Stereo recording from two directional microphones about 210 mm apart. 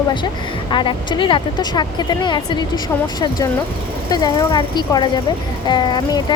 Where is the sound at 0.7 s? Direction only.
20° left (ahead or behind).